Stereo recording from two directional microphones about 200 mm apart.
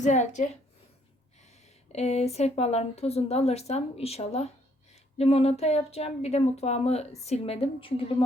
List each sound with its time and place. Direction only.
0.0 s a woman's voice: 35° left (ahead or behind)